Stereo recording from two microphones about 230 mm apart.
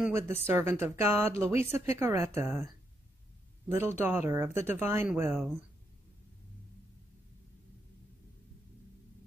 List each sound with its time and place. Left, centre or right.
0.0 s speech: centre